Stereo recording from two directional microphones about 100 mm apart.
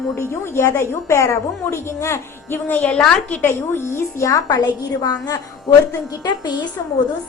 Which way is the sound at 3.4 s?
25° left (ahead or behind).